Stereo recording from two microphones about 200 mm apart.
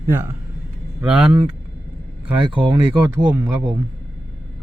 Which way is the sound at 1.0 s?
5° right (ahead or behind).